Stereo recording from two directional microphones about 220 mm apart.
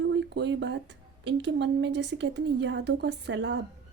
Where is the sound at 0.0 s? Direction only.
55° right (ahead or behind).